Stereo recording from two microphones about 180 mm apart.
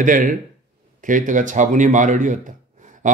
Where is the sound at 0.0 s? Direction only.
45° right (ahead or behind).